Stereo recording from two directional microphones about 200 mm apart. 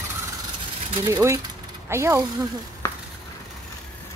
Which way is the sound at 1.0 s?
15° right (ahead or behind).